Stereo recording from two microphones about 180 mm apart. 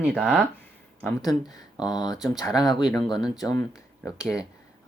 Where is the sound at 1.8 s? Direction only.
20° left (ahead or behind).